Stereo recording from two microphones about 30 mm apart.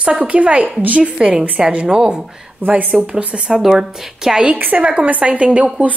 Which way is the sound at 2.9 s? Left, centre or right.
Right.